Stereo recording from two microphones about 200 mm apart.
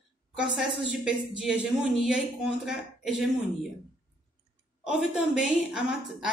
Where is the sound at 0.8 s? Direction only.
5° right (ahead or behind).